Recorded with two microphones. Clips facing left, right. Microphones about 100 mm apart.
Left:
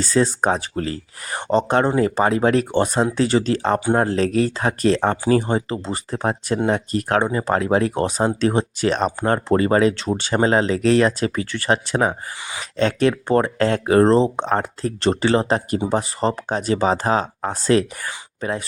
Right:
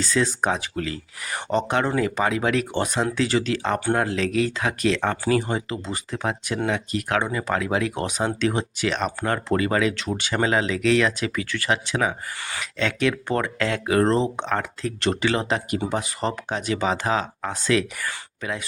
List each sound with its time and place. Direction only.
0.0 s speech: 35° left (ahead or behind)